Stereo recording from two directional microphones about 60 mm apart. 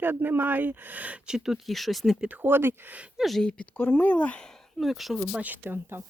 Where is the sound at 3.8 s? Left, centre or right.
Left.